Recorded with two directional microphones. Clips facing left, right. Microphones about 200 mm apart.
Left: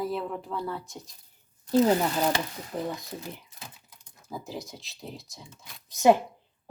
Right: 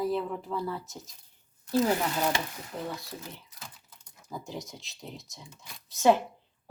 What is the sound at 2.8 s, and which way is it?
Speech, 15° left (ahead or behind).